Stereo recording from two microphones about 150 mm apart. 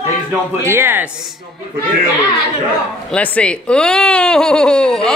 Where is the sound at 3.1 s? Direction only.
10° left (ahead or behind).